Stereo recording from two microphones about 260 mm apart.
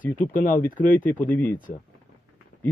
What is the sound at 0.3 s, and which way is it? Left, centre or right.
Speech, left.